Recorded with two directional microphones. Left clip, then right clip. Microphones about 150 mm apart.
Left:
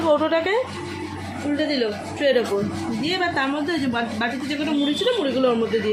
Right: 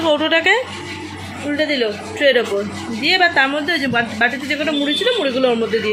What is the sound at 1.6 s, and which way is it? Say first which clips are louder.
Speech: right 6 dB; centre (ahead or behind).